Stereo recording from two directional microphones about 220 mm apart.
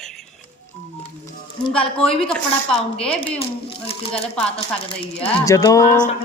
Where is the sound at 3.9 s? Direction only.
25° left (ahead or behind).